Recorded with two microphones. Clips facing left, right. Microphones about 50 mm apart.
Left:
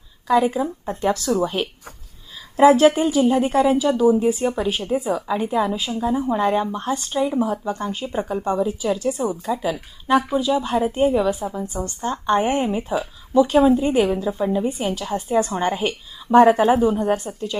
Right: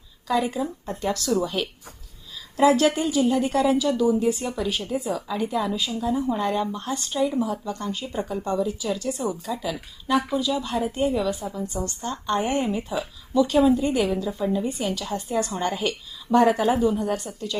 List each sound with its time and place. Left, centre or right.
0.3 s a woman's voice: left